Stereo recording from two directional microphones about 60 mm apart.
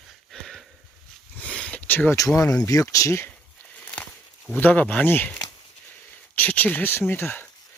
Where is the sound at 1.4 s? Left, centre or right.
Left.